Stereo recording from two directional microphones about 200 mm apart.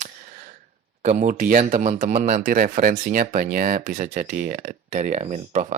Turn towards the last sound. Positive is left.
turn(degrees=-35)  # may be behind; listen again after turning